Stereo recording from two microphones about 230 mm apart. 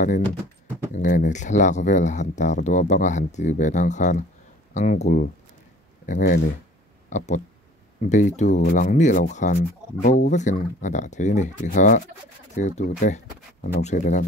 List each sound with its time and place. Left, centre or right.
0.9 s speech: left